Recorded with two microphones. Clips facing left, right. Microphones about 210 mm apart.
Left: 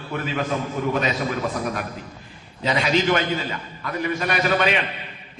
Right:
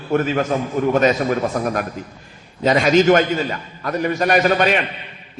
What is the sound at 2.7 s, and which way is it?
A man's voice, 45° right (ahead or behind).